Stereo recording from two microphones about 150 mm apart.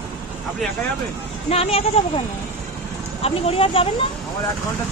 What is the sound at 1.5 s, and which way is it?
Speech, 40° left (ahead or behind).